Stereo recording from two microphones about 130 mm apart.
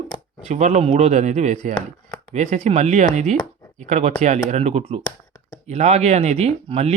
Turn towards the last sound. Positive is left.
turn(degrees=-55)  # may be behind; listen again after turning